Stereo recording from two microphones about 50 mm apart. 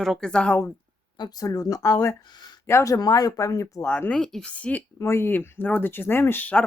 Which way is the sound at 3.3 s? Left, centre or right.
Left.